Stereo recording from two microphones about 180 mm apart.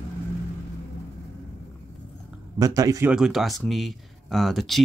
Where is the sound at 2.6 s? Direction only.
20° right (ahead or behind).